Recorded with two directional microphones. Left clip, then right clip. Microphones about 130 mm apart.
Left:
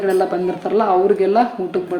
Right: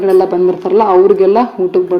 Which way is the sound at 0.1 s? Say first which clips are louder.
Right 9 dB; 25° right (ahead or behind).